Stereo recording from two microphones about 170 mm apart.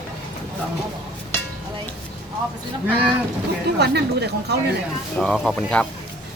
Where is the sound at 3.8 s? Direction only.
75° right (ahead or behind).